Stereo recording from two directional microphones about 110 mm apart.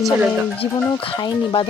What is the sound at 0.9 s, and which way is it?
Speech, 50° left (ahead or behind).